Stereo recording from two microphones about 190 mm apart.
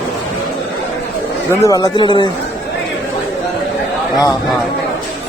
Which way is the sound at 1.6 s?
20° left (ahead or behind).